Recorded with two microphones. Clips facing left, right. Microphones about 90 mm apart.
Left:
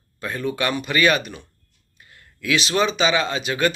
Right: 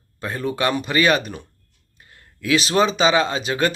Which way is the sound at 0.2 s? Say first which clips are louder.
Right 1 dB; 30° right (ahead or behind).